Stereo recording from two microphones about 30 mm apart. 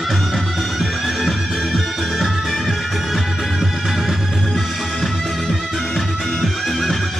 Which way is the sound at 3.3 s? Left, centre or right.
Centre.